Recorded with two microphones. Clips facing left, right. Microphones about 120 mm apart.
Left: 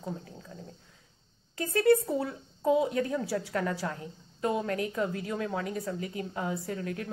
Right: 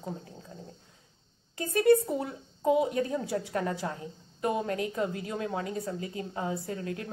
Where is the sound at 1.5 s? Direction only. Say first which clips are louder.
Right 1 dB; 25° right (ahead or behind).